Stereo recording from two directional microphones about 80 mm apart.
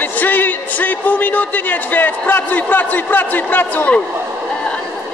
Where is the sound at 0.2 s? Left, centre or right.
Left.